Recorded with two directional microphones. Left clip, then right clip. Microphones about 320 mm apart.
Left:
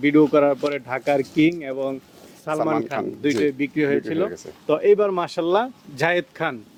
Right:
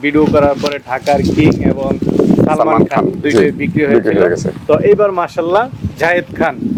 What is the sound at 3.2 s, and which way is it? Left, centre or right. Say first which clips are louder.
Speech: right 6 dB; left.